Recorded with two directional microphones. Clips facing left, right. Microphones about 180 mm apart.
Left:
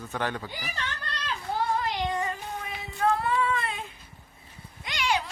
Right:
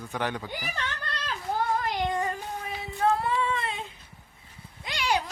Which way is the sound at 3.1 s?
25° right (ahead or behind).